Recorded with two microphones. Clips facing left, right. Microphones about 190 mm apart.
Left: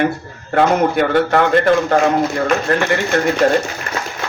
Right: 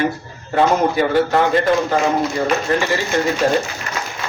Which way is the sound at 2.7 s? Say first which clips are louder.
Left 2 dB; 60° left (ahead or behind).